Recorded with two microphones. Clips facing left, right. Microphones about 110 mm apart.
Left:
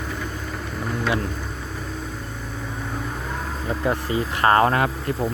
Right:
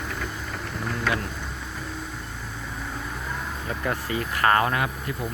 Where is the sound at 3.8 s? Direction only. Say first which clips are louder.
Left 5 dB; 25° left (ahead or behind); by 5.1 s 45° left (ahead or behind).